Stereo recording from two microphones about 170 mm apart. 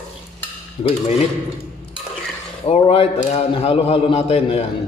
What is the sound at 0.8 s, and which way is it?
Speech, 35° left (ahead or behind).